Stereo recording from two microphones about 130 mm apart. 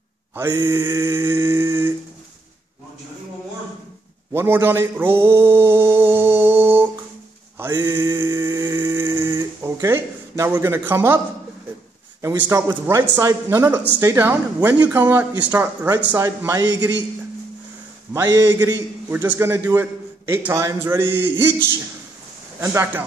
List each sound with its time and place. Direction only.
0.7 s a sound: 20° right (ahead or behind)
4.3 s mantra: 20° right (ahead or behind)
7.5 s a sound: 15° right (ahead or behind)
12.2 s a man's voice: 20° right (ahead or behind)
16.2 s a man's voice: 25° right (ahead or behind)
18.1 s a man's voice: 20° right (ahead or behind)